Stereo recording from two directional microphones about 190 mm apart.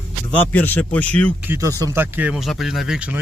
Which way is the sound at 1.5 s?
15° right (ahead or behind).